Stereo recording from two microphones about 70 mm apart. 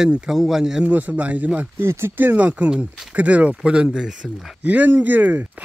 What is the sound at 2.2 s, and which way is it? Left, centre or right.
Speech, right.